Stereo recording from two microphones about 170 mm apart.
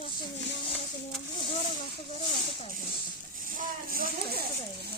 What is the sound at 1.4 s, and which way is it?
Speech, 30° left (ahead or behind).